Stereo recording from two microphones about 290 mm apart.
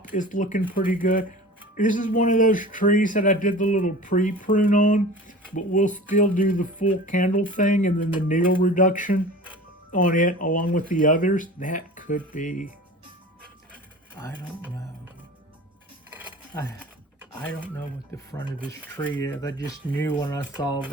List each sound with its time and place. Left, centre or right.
0.2 s speech: left
16.6 s speech: centre